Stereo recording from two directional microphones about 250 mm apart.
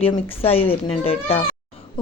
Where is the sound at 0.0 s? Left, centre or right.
Left.